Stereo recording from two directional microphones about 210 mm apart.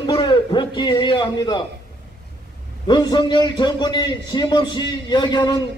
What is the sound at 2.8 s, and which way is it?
A man's voice, 20° left (ahead or behind).